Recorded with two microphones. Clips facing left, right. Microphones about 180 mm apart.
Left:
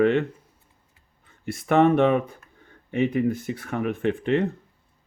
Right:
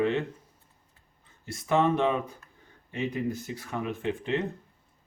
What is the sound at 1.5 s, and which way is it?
Speech, 60° left (ahead or behind).